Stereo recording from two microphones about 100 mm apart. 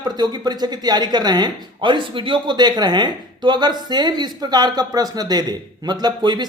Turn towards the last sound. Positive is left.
turn(degrees=-45)  # may be behind; listen again after turning